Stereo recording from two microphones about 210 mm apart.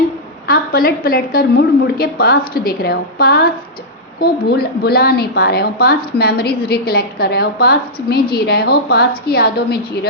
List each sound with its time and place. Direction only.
0.4 s a woman's voice: 45° left (ahead or behind)